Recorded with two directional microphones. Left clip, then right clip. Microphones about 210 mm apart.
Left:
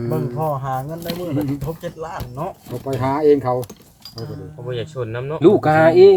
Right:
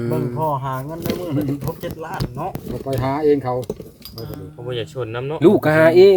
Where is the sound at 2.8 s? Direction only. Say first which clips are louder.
Left 2 dB; 10° left (ahead or behind).